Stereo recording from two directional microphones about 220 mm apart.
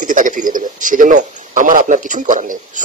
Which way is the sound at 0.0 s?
35° right (ahead or behind).